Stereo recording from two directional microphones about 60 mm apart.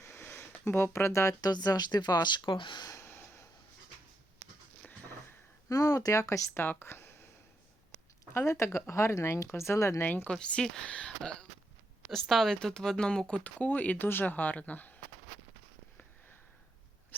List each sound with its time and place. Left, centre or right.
0.0 s a sound: left
1.4 s speech: left
3.0 s a sound: left
5.6 s speech: left
6.5 s speech: left
8.3 s speech: left
10.0 s speech: left
10.2 s speech: centre
12.3 s speech: centre; by 14.9 s left